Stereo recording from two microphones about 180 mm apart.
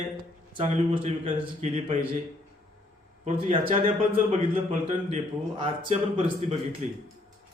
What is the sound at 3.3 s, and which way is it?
A man's voice, 30° right (ahead or behind).